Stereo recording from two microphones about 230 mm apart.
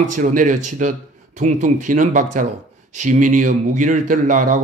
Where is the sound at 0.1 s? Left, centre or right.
Right.